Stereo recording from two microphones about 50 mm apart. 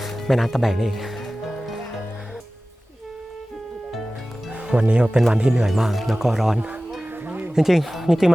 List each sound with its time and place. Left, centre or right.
0.0 s music: centre
4.5 s speech: right
7.0 s music: right
7.5 s speech: centre